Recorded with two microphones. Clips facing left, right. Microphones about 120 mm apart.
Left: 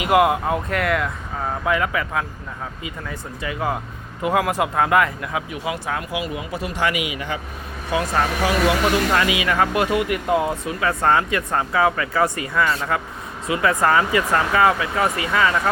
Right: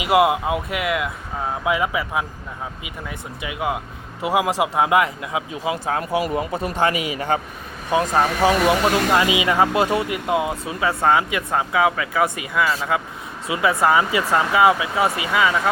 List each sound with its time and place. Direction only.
0.0 s speech: 10° right (ahead or behind)
1.6 s speech: 15° right (ahead or behind); by 7.4 s 40° right (ahead or behind)
7.9 s speech: 20° right (ahead or behind)